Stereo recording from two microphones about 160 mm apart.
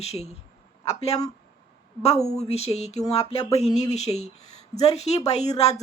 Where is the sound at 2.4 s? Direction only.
40° left (ahead or behind).